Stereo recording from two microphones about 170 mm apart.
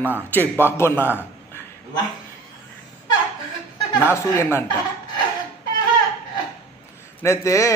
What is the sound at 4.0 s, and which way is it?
Speech, 15° left (ahead or behind).